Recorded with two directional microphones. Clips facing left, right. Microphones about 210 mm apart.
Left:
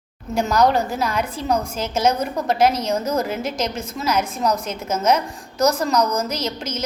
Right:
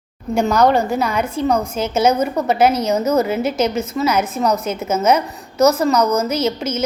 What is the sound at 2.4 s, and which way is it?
A woman's voice, 5° right (ahead or behind).